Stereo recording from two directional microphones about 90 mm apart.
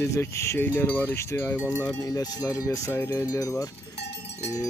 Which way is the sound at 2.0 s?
45° left (ahead or behind).